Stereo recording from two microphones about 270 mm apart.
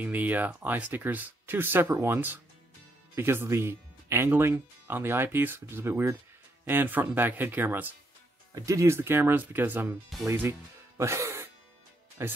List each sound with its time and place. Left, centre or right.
0.0 s speech: centre
11.0 s music: centre
12.2 s speech: centre